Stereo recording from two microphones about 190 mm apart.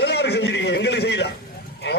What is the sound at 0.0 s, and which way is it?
A man's voice, 60° left (ahead or behind).